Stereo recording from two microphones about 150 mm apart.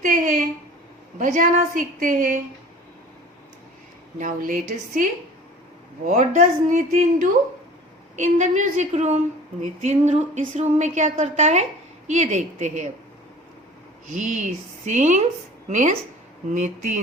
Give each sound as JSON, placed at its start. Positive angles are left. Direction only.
{"t": 0.0, "sound": "a sound", "side_deg": -65}
{"t": 1.2, "sound": "a woman's voice", "side_deg": -55}
{"t": 4.2, "sound": "a woman's voice", "side_deg": -65}
{"t": 6.1, "sound": "a woman's voice", "side_deg": -55}
{"t": 14.1, "sound": "a woman's voice", "side_deg": -55}